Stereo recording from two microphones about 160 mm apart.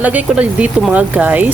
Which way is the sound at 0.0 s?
10° right (ahead or behind).